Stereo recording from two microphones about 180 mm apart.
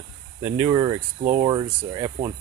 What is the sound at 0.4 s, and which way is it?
Speech, 10° right (ahead or behind).